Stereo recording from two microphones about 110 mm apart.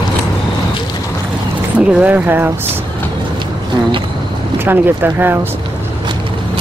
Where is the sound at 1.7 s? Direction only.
15° right (ahead or behind).